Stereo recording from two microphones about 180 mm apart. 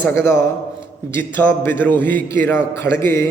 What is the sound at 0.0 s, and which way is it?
A man's voice, 15° left (ahead or behind).